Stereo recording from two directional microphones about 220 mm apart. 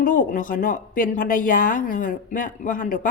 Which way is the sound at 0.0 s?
35° left (ahead or behind).